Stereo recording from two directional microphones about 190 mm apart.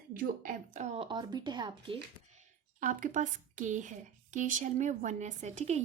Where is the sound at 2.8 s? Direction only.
40° right (ahead or behind).